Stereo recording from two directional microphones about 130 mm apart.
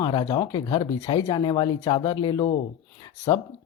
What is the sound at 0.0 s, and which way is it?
Speech, 35° left (ahead or behind).